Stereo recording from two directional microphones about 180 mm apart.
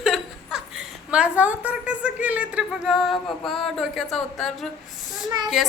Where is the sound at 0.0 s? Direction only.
Centre (ahead or behind).